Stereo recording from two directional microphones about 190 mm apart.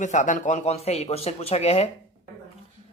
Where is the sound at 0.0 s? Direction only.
40° left (ahead or behind).